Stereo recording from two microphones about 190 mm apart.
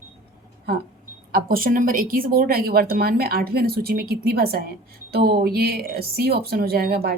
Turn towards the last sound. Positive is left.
turn(degrees=-55)  # may be behind; listen again after turning